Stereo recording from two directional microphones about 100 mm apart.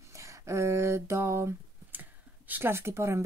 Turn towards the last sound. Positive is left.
turn(degrees=-30)  # may be behind; listen again after turning